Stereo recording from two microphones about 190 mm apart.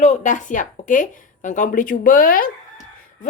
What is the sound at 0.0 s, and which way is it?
A woman's voice, 40° left (ahead or behind).